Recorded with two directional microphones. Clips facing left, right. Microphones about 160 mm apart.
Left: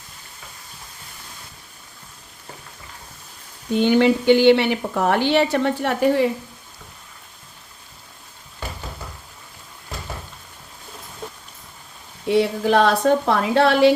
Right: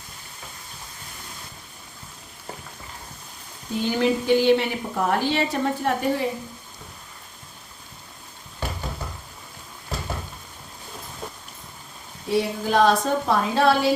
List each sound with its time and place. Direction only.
3.7 s a woman's voice: 70° left (ahead or behind)
12.3 s a woman's voice: 80° left